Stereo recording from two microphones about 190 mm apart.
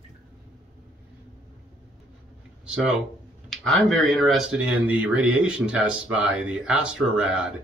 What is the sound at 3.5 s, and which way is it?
Speech, centre (ahead or behind).